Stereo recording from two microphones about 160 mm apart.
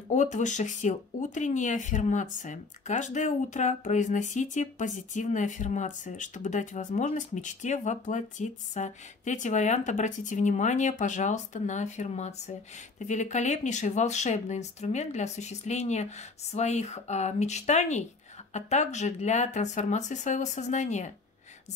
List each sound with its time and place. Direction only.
0.1 s speech: 50° left (ahead or behind)